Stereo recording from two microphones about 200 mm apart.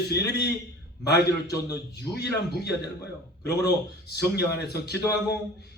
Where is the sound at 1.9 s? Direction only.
55° left (ahead or behind).